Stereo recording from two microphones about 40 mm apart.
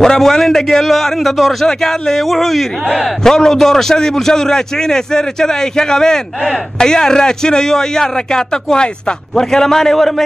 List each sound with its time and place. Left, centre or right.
0.0 s a man's voice: centre
3.3 s a man's voice: centre